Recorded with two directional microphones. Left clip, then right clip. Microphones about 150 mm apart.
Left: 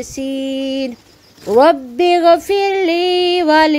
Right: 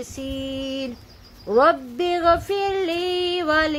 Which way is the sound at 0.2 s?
35° left (ahead or behind).